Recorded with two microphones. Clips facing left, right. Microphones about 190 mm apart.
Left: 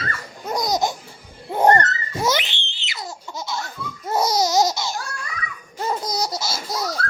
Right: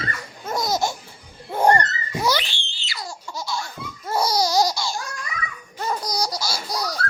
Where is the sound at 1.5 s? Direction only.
20° left (ahead or behind).